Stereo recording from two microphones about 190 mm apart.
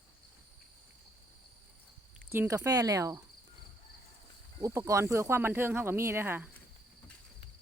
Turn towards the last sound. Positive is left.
turn(degrees=-10)  # may be behind; listen again after turning